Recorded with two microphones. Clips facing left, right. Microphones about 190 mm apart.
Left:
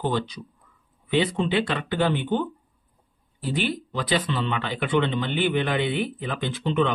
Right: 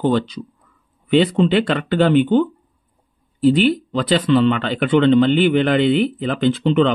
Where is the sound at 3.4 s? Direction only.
70° right (ahead or behind).